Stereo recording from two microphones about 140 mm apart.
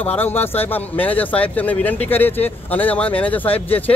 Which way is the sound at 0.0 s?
15° left (ahead or behind).